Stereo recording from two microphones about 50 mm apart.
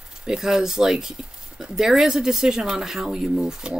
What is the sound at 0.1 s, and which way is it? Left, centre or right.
Speech, centre.